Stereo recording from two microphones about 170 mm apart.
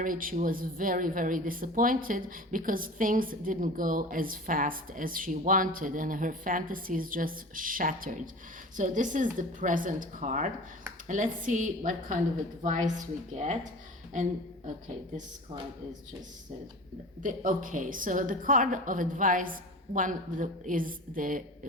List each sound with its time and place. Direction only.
0.0 s speech: 55° right (ahead or behind)
17.2 s speech: 50° right (ahead or behind)